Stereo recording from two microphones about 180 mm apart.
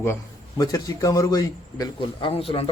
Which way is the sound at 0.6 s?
20° left (ahead or behind).